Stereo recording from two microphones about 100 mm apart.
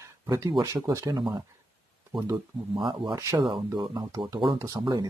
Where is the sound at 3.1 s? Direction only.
30° right (ahead or behind).